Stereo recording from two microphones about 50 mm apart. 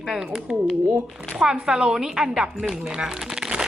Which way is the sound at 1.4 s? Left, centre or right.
Centre.